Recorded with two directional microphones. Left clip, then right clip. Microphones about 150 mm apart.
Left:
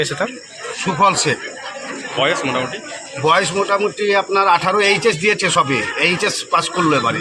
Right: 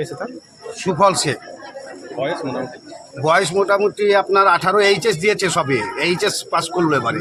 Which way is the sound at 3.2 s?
40° right (ahead or behind).